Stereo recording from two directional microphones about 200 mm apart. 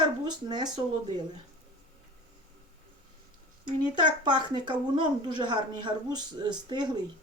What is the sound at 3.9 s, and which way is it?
A woman's voice, 20° right (ahead or behind).